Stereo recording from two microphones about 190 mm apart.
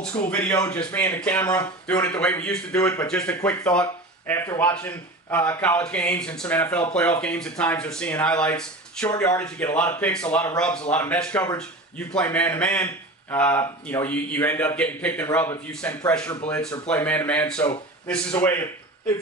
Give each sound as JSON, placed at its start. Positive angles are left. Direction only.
{"t": 0.3, "sound": "a man's voice", "side_deg": 10}